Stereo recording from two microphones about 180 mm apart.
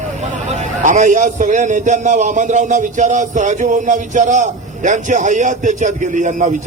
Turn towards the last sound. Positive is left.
turn(degrees=-45)  # may be behind; listen again after turning